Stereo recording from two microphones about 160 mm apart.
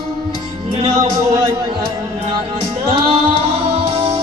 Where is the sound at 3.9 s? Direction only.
35° right (ahead or behind).